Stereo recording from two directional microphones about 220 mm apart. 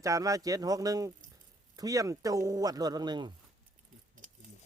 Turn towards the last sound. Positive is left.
turn(degrees=-20)  # may be behind; listen again after turning